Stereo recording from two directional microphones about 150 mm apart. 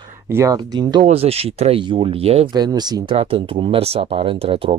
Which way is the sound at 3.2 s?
40° right (ahead or behind).